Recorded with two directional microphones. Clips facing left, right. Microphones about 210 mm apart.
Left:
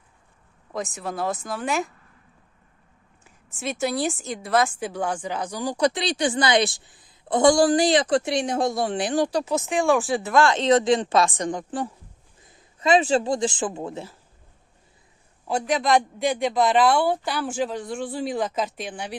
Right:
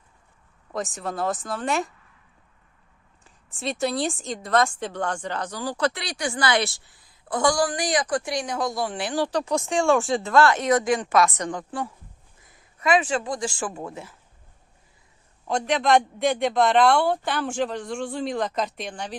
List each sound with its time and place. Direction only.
0.9 s a man's voice: centre (ahead or behind)
3.2 s a woman's voice: centre (ahead or behind)
10.2 s speech: 15° left (ahead or behind)
11.4 s a woman's voice: 20° left (ahead or behind)
12.4 s a sound: 25° left (ahead or behind)
13.6 s speech: 20° left (ahead or behind)
13.8 s speech: 30° left (ahead or behind)
15.4 s a man's voice: 5° left (ahead or behind)